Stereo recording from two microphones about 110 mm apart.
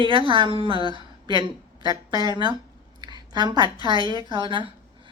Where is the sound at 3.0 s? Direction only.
40° right (ahead or behind).